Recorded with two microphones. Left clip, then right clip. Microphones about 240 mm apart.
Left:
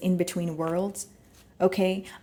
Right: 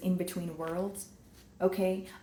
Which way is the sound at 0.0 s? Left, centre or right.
Left.